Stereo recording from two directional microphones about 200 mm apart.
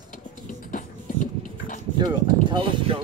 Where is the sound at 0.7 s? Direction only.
40° left (ahead or behind).